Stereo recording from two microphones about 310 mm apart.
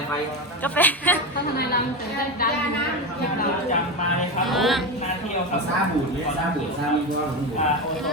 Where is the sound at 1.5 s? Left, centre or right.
Left.